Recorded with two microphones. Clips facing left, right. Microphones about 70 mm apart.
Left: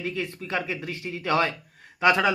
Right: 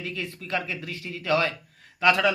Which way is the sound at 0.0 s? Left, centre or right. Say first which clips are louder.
Left 3 dB; left.